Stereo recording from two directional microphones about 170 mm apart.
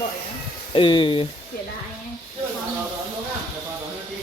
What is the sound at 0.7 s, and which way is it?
Speech, 30° left (ahead or behind).